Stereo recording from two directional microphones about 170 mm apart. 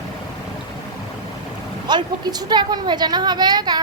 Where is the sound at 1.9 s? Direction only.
25° right (ahead or behind).